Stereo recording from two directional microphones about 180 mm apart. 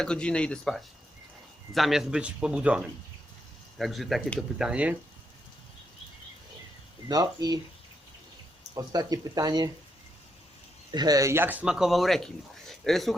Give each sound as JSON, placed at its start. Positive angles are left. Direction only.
{"t": 0.0, "sound": "speech", "side_deg": 5}
{"t": 7.1, "sound": "speech", "side_deg": -20}
{"t": 8.7, "sound": "speech", "side_deg": -20}
{"t": 10.9, "sound": "speech", "side_deg": -20}